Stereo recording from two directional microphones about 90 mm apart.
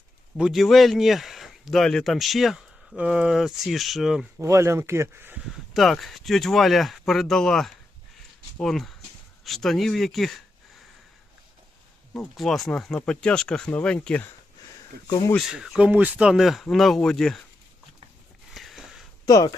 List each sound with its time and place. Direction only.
0.3 s a man's voice: 5° right (ahead or behind)
4.4 s speech: 30° right (ahead or behind)
5.7 s a man's voice: centre (ahead or behind)
12.4 s a man's voice: 5° left (ahead or behind)
15.4 s a man's voice: 5° right (ahead or behind)
15.9 s a man's voice: 15° right (ahead or behind); by 17.4 s 5° left (ahead or behind)
18.5 s sniff: centre (ahead or behind)
19.2 s speech: 40° left (ahead or behind)